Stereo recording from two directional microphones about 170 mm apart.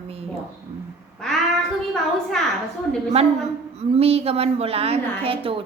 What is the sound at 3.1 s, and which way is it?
A woman's voice, 35° right (ahead or behind).